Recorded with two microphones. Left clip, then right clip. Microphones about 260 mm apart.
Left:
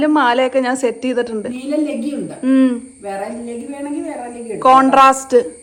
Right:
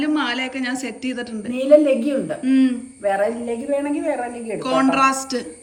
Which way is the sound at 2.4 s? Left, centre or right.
Centre.